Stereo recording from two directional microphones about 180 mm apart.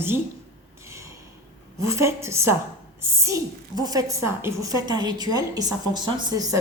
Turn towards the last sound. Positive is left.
turn(degrees=-20)  # may be behind; listen again after turning